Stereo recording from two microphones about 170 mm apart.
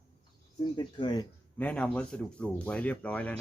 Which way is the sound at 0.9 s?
25° left (ahead or behind).